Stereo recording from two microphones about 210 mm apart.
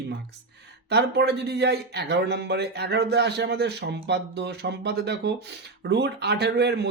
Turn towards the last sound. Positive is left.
turn(degrees=-50)  # may be behind; listen again after turning